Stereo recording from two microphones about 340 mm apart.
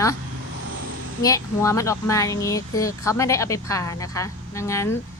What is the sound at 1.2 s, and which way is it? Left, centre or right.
A woman's voice, centre.